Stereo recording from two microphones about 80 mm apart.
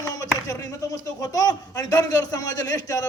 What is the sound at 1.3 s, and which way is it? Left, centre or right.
A man's voice, left.